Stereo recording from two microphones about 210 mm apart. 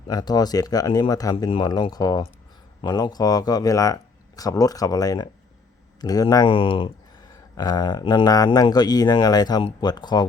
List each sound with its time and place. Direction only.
0.1 s speech: 20° left (ahead or behind)